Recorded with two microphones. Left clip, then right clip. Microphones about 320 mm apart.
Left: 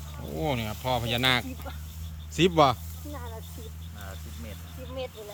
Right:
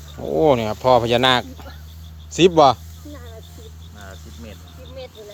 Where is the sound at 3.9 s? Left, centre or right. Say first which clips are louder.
Right 5 dB; right.